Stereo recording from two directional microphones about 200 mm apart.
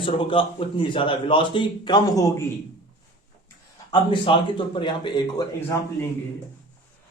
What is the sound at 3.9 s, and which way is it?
Speech, 25° left (ahead or behind).